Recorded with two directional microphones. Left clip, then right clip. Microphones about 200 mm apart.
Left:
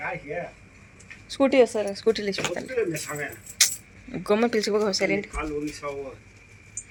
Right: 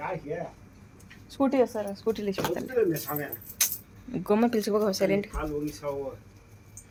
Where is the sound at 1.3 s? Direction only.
15° left (ahead or behind).